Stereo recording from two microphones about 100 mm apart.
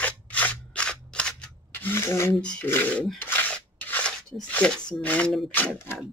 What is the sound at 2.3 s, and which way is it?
Speech, 10° left (ahead or behind).